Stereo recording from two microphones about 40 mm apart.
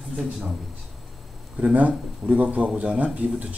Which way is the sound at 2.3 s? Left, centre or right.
Right.